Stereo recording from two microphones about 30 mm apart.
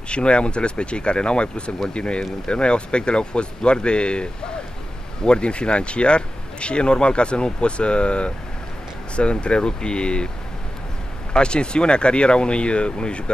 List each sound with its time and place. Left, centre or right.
0.1 s speech: left
11.3 s speech: left